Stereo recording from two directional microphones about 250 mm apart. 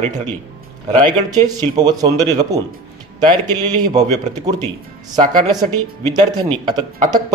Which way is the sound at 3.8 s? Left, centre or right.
Centre.